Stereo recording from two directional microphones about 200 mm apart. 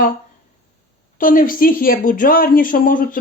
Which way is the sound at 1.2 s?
45° left (ahead or behind).